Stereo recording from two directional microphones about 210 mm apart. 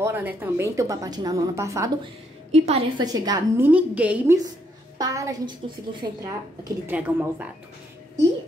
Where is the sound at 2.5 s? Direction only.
30° right (ahead or behind).